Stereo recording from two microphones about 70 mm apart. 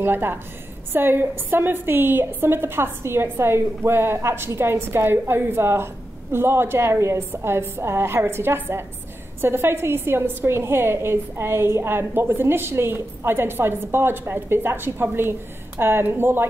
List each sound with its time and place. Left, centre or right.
0.0 s a woman's voice: right